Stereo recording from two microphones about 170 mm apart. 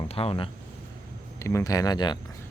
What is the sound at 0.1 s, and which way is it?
Speech, 35° left (ahead or behind).